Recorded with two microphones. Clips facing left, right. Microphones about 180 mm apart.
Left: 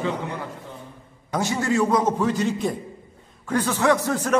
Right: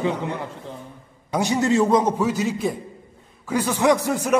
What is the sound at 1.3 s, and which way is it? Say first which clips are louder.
Speech: right 3 dB; 20° right (ahead or behind).